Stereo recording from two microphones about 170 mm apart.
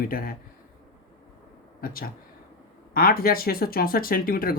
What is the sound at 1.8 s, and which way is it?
Speech, 60° left (ahead or behind).